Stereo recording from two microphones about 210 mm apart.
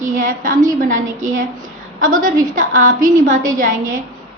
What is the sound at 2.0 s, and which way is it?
A woman's voice, 40° right (ahead or behind).